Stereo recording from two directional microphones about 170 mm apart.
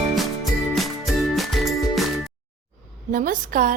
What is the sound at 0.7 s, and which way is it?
Music, centre (ahead or behind).